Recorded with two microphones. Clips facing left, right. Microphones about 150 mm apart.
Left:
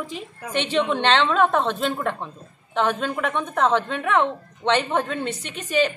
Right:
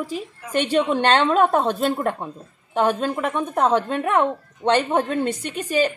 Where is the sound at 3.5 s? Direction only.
10° right (ahead or behind).